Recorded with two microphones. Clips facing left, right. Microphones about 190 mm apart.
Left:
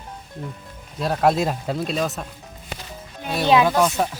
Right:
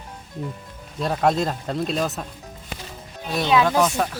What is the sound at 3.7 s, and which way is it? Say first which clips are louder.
Speech: even; centre (ahead or behind).